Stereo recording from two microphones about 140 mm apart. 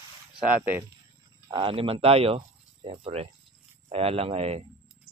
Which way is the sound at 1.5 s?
40° right (ahead or behind).